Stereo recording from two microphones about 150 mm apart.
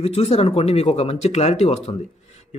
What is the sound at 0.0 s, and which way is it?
Speech, 40° left (ahead or behind).